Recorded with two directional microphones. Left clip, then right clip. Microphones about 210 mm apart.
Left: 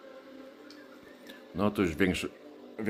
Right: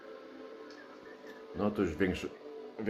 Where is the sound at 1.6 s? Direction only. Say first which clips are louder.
Left 4 dB; 40° left (ahead or behind).